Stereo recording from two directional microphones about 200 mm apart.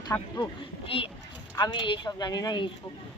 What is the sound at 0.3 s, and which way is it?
Speech, 25° left (ahead or behind).